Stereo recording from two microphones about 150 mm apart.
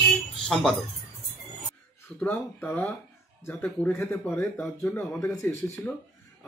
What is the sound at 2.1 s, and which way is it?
Speech, 15° left (ahead or behind).